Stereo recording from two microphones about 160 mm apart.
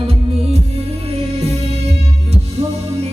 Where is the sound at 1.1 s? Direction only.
40° right (ahead or behind).